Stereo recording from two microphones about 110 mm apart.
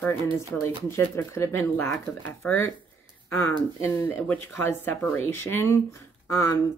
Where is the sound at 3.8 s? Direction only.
20° left (ahead or behind).